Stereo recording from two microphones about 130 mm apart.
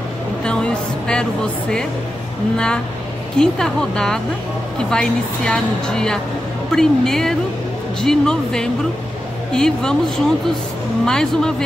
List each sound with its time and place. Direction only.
0.4 s a woman's voice: 5° left (ahead or behind)